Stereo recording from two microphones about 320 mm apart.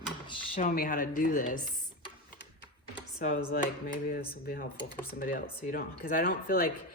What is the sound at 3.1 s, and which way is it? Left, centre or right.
Speech, left.